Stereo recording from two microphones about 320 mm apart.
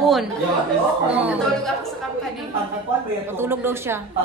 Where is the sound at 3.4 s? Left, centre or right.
Centre.